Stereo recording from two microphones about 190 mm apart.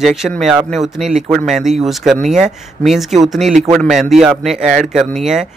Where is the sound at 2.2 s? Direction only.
40° right (ahead or behind).